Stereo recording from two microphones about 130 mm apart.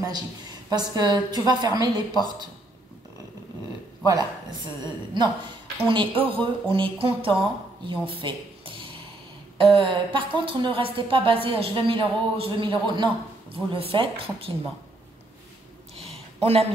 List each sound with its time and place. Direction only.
0.7 s a woman's voice: 30° right (ahead or behind)
4.8 s a woman's voice: 35° right (ahead or behind)
16.3 s speech: 55° right (ahead or behind)